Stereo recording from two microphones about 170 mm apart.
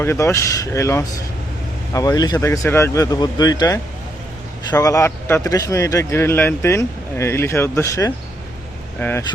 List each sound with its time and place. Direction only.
0.0 s speech: 15° left (ahead or behind)